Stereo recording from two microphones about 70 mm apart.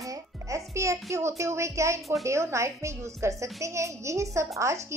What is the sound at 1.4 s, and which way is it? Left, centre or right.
Speech, right.